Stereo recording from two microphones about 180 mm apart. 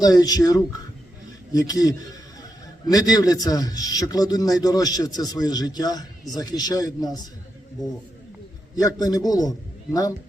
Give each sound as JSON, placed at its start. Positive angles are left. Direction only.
{"t": 0.0, "sound": "a man's voice", "side_deg": 20}
{"t": 8.7, "sound": "a man's voice", "side_deg": 20}